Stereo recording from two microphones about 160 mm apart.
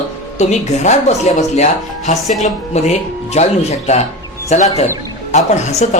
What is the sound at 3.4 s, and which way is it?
Speech, 45° left (ahead or behind).